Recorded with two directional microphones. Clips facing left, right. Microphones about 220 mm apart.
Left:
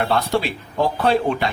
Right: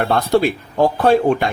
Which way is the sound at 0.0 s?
45° right (ahead or behind).